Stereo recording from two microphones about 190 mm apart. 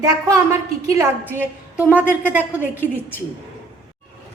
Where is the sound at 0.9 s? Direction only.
15° right (ahead or behind).